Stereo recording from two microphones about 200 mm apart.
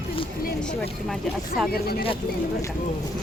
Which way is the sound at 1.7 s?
50° left (ahead or behind).